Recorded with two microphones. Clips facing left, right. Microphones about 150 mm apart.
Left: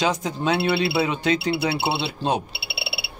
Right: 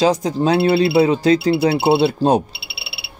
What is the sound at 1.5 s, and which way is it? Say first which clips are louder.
Speech: right 8 dB; 50° right (ahead or behind).